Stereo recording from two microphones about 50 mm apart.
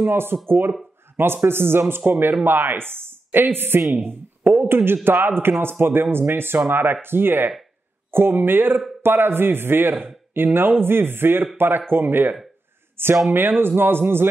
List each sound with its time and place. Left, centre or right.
0.0 s speech: right